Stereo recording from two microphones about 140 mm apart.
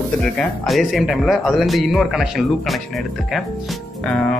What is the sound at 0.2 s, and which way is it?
Speech, centre (ahead or behind).